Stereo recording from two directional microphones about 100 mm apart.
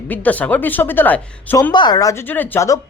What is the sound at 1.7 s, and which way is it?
Speech, 45° left (ahead or behind).